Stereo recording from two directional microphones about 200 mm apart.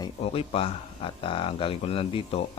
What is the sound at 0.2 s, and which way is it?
Speech, 30° left (ahead or behind).